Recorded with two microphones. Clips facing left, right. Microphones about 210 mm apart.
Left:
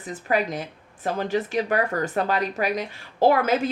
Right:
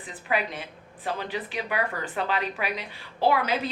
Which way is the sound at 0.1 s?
45° left (ahead or behind).